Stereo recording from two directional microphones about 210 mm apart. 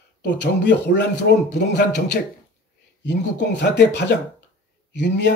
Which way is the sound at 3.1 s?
55° left (ahead or behind).